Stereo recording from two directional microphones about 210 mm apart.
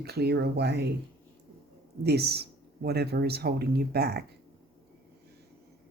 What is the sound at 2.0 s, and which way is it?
Speech, 50° right (ahead or behind).